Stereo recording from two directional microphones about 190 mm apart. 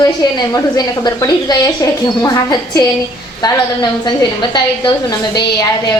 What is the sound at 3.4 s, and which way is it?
A woman's voice, 25° left (ahead or behind).